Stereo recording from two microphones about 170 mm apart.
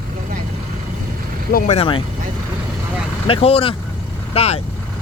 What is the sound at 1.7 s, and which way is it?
Speech, 35° left (ahead or behind).